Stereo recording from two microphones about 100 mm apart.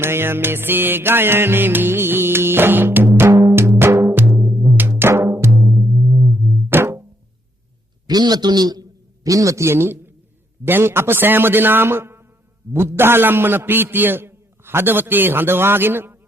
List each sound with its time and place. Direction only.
0.0 s music: 25° right (ahead or behind)
4.8 s drum: 20° right (ahead or behind)
6.7 s music: 25° right (ahead or behind)
8.0 s a man's voice: 45° right (ahead or behind); by 16.1 s 20° right (ahead or behind)